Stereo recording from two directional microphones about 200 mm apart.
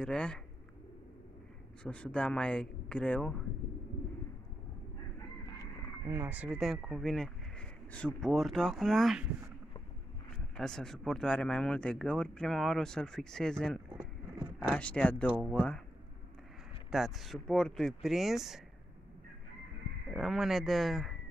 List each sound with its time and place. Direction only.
0.0 s speech: 5° left (ahead or behind)
1.8 s speech: 5° left (ahead or behind)
6.0 s speech: 10° right (ahead or behind)
10.5 s speech: 5° left (ahead or behind)
16.9 s speech: centre (ahead or behind)
20.1 s speech: centre (ahead or behind)